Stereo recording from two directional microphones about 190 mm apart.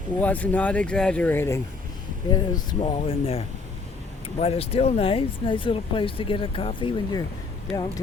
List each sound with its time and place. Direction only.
0.2 s speech: 5° left (ahead or behind)
2.3 s speech: 25° left (ahead or behind)